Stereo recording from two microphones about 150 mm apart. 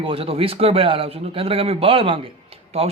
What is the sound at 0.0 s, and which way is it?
Speech, 40° right (ahead or behind).